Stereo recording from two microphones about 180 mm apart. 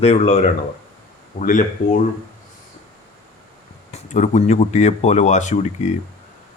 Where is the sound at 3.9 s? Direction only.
40° left (ahead or behind).